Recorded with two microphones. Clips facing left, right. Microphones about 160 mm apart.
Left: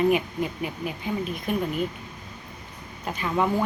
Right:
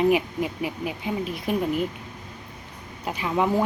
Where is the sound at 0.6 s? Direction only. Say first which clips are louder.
Right 2 dB; 90° right.